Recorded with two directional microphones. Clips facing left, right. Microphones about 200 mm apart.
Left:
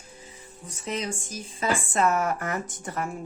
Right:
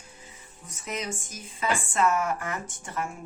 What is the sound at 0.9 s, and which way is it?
Speech, 30° left (ahead or behind).